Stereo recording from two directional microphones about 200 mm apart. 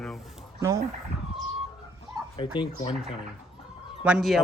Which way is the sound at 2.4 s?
25° left (ahead or behind).